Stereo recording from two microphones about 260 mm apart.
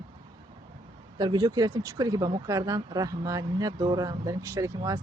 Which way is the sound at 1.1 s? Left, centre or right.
Centre.